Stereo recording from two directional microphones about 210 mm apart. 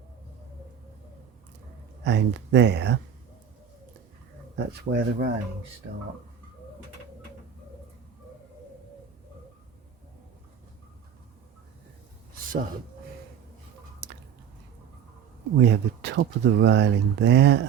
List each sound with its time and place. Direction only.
2.0 s speech: 55° right (ahead or behind)
4.5 s speech: 50° right (ahead or behind)
15.6 s speech: 55° right (ahead or behind)